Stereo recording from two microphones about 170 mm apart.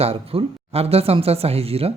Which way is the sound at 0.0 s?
35° right (ahead or behind).